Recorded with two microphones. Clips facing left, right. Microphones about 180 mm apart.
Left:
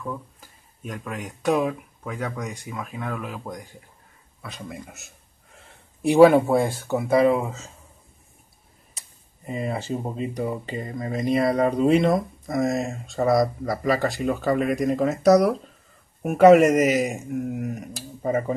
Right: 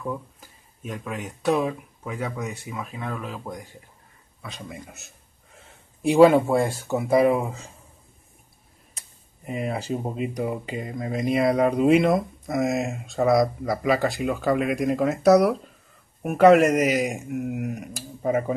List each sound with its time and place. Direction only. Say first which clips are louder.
0.0 s speech: right 2 dB; 10° right (ahead or behind)
0.8 s speech: right 1 dB; centre (ahead or behind)
7.0 s speech: even; 15° right (ahead or behind)
9.5 s speech: even; 5° right (ahead or behind)